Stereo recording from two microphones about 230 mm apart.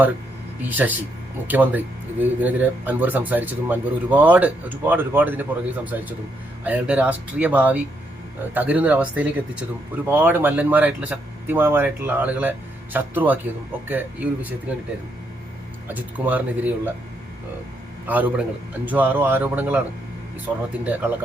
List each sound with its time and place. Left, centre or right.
0.6 s speech: centre
15.9 s speech: centre
18.0 s speech: centre
20.8 s speech: centre